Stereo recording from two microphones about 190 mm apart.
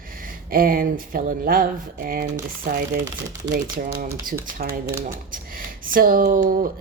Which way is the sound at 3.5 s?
50° right (ahead or behind).